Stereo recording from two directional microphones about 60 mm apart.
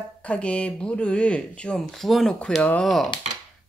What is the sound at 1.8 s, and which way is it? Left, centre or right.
Speech, centre.